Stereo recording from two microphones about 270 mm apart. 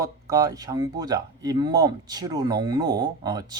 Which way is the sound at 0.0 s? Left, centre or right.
Centre.